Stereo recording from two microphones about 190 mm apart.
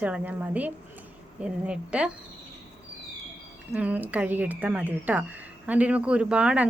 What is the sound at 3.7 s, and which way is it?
Speech, 10° right (ahead or behind).